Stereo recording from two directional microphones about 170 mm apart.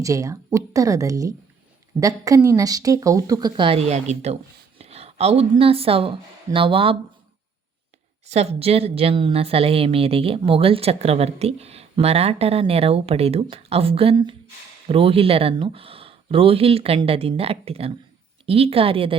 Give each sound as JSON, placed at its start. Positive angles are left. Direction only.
{"t": 0.0, "sound": "speech", "side_deg": -20}
{"t": 8.3, "sound": "a woman's voice", "side_deg": -40}